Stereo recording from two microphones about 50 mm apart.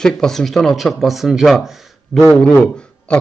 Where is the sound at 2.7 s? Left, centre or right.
Centre.